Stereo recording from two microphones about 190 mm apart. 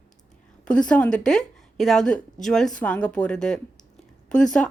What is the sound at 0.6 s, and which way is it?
A woman's voice, 5° left (ahead or behind).